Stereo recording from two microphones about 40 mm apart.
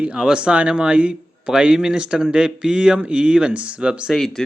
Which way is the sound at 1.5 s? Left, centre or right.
Right.